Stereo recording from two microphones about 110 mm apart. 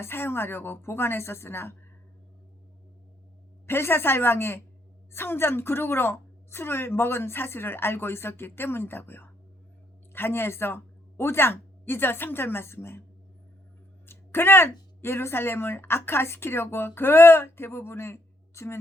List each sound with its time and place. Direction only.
0.0 s a woman's voice: 20° left (ahead or behind)
3.7 s a woman's voice: 20° left (ahead or behind)
14.1 s a woman's voice: 20° left (ahead or behind)